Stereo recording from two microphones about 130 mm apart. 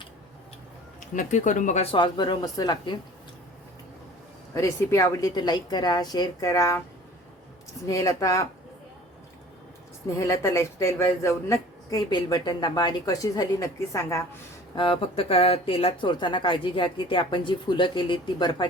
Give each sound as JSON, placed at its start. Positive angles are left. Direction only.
{"t": 0.9, "sound": "speech", "side_deg": 75}
{"t": 1.8, "sound": "speech", "side_deg": 40}
{"t": 4.5, "sound": "speech", "side_deg": 20}
{"t": 7.9, "sound": "speech", "side_deg": 25}
{"t": 10.2, "sound": "speech", "side_deg": 25}
{"t": 14.8, "sound": "speech", "side_deg": 45}